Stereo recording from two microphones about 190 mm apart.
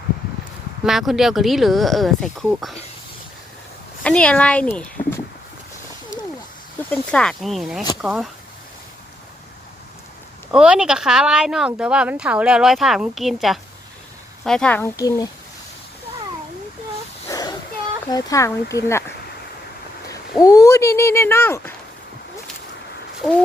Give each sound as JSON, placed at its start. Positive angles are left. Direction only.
{"t": 0.9, "sound": "speech", "side_deg": 0}
{"t": 4.0, "sound": "speech", "side_deg": 5}
{"t": 6.9, "sound": "speech", "side_deg": 5}
{"t": 10.5, "sound": "speech", "side_deg": -5}
{"t": 17.2, "sound": "a sound", "side_deg": 20}
{"t": 18.1, "sound": "speech", "side_deg": 20}
{"t": 20.4, "sound": "speech", "side_deg": 20}
{"t": 23.2, "sound": "speech", "side_deg": 0}